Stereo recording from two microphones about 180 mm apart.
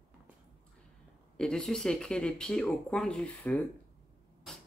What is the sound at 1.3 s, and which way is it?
Speech, 5° left (ahead or behind).